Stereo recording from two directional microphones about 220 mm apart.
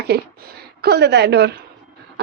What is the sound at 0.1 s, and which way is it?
A woman's voice, 45° right (ahead or behind).